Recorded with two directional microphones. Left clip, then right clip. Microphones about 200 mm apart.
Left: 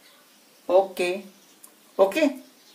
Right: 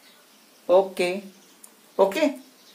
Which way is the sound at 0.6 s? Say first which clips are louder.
Right 1 dB; 15° right (ahead or behind).